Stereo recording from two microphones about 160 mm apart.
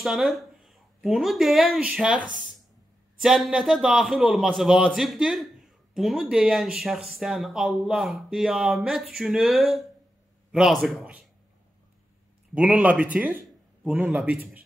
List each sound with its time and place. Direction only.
0.0 s a man's voice: centre (ahead or behind)
12.5 s speech: 5° right (ahead or behind)